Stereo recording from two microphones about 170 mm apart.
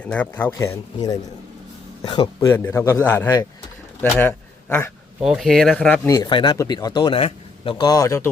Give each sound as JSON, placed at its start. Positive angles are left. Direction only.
{"t": 0.0, "sound": "speech", "side_deg": 5}
{"t": 2.5, "sound": "a man's voice", "side_deg": 15}
{"t": 5.2, "sound": "speech", "side_deg": 0}
{"t": 6.1, "sound": "speech", "side_deg": 20}